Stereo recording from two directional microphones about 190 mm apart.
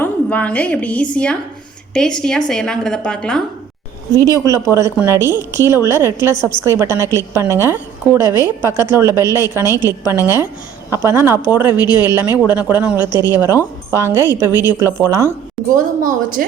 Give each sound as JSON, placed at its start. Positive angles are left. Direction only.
{"t": 0.0, "sound": "a woman's voice", "side_deg": 5}
{"t": 4.1, "sound": "a woman's voice", "side_deg": -15}
{"t": 15.6, "sound": "a woman's voice", "side_deg": 0}
{"t": 16.0, "sound": "a woman's voice", "side_deg": -45}